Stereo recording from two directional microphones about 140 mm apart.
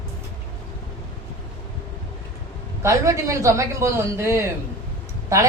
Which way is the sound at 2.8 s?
20° right (ahead or behind).